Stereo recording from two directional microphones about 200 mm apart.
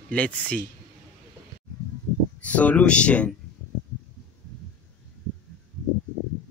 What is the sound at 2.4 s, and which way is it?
Speech, 5° left (ahead or behind).